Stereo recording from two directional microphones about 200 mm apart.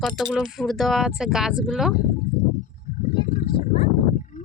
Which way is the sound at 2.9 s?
35° left (ahead or behind).